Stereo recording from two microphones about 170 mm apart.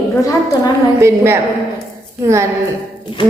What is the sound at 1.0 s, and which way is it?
A woman's voice, 15° right (ahead or behind).